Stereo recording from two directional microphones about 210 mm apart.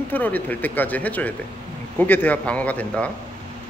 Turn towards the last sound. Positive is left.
turn(degrees=5)  # may be behind; listen again after turning